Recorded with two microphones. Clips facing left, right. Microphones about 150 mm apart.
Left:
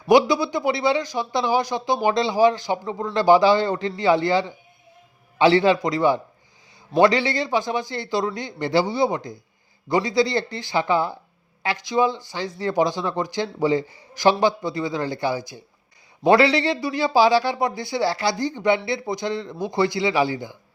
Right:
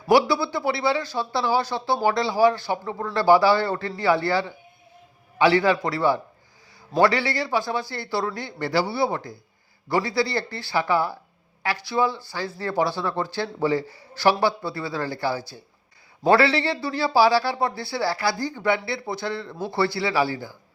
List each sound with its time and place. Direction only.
0.1 s speech: 20° left (ahead or behind)